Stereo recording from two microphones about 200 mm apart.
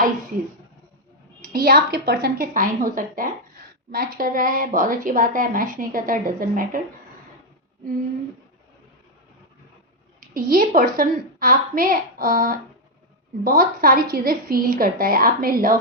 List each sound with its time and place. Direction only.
1.4 s a woman's voice: 45° right (ahead or behind)
10.2 s a woman's voice: 45° right (ahead or behind)